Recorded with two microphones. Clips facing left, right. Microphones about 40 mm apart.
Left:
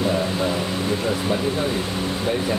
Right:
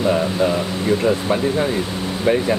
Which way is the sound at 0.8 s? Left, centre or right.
Right.